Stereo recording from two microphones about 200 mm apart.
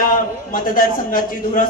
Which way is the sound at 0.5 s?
45° left (ahead or behind).